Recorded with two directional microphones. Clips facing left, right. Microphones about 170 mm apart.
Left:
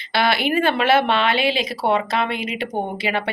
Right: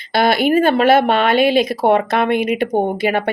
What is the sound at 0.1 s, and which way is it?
Speech, 45° right (ahead or behind).